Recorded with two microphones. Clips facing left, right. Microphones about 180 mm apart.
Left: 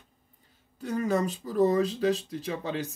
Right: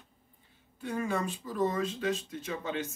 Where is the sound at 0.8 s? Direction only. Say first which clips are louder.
Left 5 dB; 40° left (ahead or behind).